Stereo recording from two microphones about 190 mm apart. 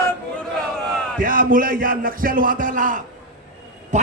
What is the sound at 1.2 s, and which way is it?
A man's voice, 45° right (ahead or behind).